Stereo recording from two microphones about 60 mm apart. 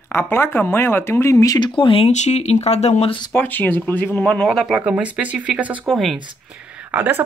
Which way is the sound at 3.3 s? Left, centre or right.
Left.